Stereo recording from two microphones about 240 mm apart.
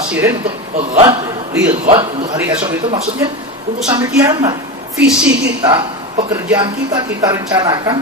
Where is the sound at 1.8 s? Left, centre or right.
Right.